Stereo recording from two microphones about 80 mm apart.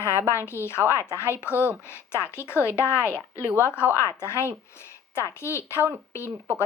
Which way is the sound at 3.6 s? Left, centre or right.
Left.